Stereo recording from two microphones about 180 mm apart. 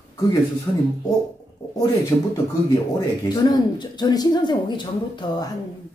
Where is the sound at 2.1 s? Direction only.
20° left (ahead or behind).